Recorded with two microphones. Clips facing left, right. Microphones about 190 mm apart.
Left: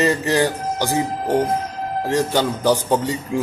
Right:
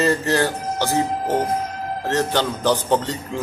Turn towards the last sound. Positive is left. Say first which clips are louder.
# left 2 dB
turn(degrees=10)  # may be behind; listen again after turning